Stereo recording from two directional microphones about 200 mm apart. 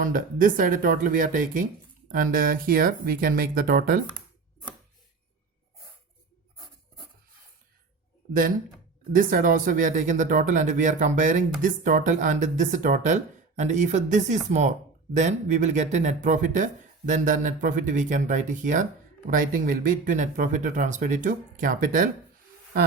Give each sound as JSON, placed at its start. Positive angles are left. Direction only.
{"t": 0.0, "sound": "speech", "side_deg": -45}
{"t": 8.3, "sound": "speech", "side_deg": -45}